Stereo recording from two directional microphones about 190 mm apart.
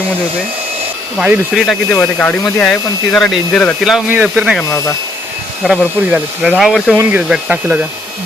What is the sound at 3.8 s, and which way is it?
Speech, 5° right (ahead or behind).